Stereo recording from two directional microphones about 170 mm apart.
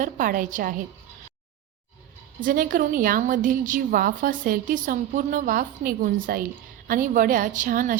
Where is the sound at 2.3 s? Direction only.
55° right (ahead or behind).